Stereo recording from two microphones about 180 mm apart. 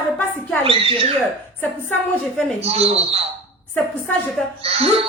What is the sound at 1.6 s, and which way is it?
Speech, 5° left (ahead or behind).